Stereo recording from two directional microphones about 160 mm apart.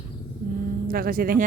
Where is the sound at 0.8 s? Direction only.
65° right (ahead or behind).